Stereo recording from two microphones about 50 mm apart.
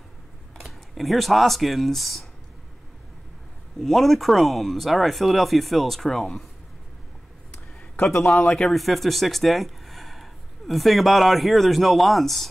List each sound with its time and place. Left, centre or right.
0.6 s speech: centre
3.8 s speech: centre
7.5 s a sound: left
8.2 s speech: centre